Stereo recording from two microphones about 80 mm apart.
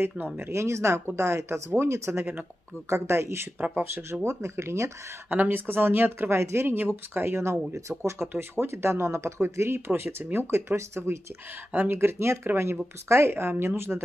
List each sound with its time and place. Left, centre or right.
0.0 s speech: right
5.3 s speech: right